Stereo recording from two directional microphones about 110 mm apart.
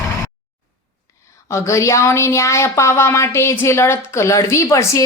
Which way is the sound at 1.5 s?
25° left (ahead or behind).